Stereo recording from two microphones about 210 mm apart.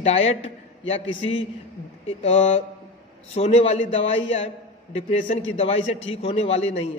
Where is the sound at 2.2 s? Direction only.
30° left (ahead or behind).